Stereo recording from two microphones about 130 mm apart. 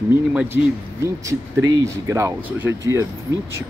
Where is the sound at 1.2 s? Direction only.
25° right (ahead or behind).